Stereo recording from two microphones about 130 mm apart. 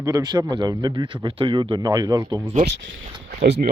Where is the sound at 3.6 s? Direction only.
90° right.